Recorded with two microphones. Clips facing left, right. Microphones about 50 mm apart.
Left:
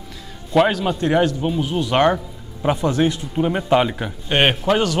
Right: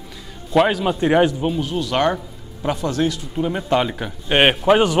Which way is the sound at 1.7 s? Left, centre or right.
Left.